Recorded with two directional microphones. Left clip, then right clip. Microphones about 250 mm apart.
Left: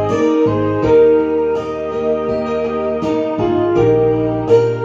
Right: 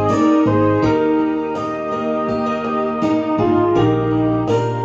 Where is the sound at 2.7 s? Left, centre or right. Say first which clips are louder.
Left 1 dB; right.